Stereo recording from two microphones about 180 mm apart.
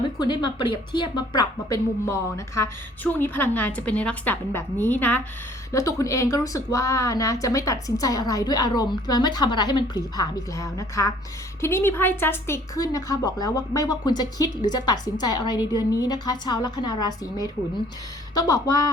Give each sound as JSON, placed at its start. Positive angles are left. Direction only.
{"t": 0.2, "sound": "a woman's voice", "side_deg": 25}